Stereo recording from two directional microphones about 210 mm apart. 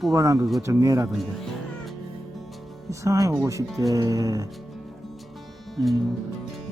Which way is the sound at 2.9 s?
15° right (ahead or behind).